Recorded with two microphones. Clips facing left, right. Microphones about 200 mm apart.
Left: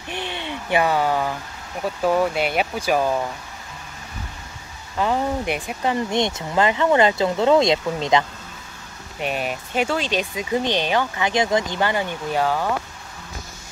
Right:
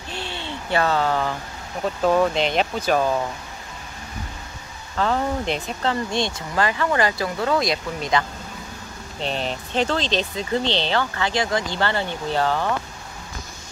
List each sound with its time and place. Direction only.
0.1 s a sound: 15° left (ahead or behind)
2.0 s speech: 10° left (ahead or behind)
4.9 s speech: 15° left (ahead or behind)
9.2 s speech: 10° left (ahead or behind)